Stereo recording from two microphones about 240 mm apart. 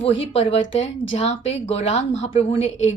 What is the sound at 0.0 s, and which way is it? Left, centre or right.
A woman's voice, left.